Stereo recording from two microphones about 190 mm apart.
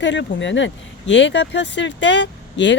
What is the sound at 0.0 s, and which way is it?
Speech, 70° left (ahead or behind).